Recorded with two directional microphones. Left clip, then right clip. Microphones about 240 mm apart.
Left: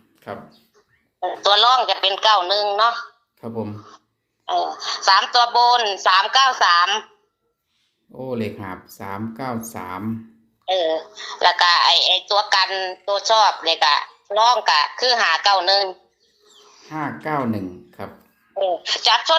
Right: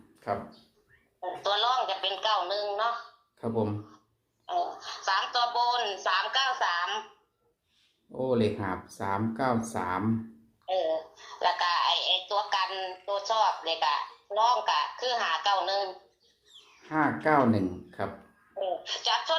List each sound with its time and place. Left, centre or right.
0.2 s a man's voice: left
3.4 s speech: left
8.1 s speech: left